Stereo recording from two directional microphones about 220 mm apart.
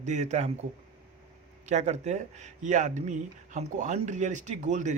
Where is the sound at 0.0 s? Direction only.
30° right (ahead or behind).